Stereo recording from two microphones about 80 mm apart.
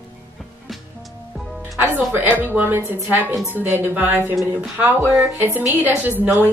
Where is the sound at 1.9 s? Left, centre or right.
Right.